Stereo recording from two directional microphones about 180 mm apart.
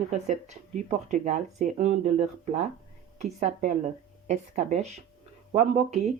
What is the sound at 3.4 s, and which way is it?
Speech, 40° right (ahead or behind).